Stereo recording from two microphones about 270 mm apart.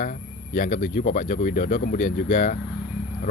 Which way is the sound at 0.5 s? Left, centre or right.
Left.